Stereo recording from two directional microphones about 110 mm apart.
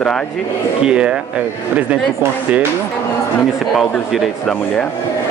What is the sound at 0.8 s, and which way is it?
Speech, 10° right (ahead or behind).